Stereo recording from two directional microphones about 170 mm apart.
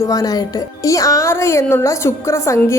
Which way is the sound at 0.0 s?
20° left (ahead or behind).